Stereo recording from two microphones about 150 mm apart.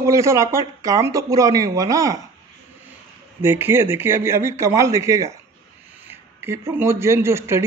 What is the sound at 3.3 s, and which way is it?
Speech, 15° right (ahead or behind).